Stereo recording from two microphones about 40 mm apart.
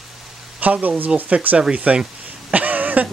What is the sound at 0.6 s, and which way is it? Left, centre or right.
Speech, right.